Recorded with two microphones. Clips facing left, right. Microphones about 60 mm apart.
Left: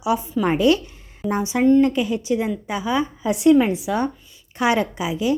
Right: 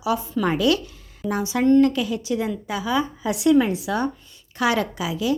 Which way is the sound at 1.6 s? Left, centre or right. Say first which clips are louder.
Left 1 dB; centre.